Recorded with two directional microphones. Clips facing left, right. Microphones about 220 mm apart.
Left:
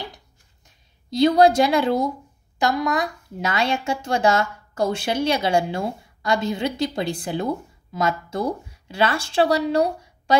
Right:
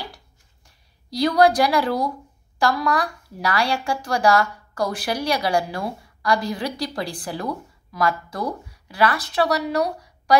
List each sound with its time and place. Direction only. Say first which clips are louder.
0.7 s a woman's voice: left 4 dB; 25° left (ahead or behind)